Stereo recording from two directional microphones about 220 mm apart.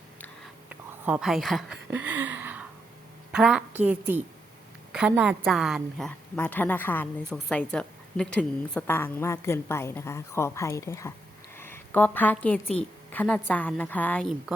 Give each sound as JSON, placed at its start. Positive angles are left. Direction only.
{"t": 0.7, "sound": "a woman's voice", "side_deg": -5}
{"t": 11.5, "sound": "a sound", "side_deg": 10}
{"t": 13.1, "sound": "a woman's voice", "side_deg": 5}